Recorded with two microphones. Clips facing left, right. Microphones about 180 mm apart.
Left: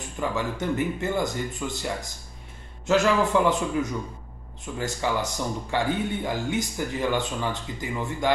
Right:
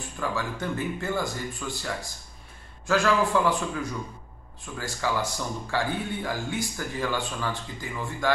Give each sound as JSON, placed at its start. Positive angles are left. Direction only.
{"t": 0.2, "sound": "speech", "side_deg": 20}